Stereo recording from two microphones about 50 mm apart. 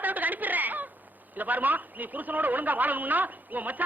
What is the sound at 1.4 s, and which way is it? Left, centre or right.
A man's voice, right.